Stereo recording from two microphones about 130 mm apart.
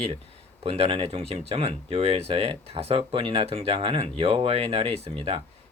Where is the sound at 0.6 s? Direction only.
50° right (ahead or behind).